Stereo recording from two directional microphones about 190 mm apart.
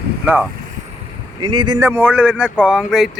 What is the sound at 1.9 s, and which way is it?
Speech, 10° right (ahead or behind).